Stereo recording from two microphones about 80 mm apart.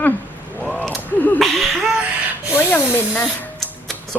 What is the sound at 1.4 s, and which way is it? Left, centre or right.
Speech, centre.